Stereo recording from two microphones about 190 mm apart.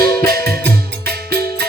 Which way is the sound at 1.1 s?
55° right (ahead or behind).